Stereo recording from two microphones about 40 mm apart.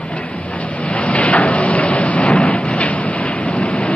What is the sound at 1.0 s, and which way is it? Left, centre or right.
Train, left.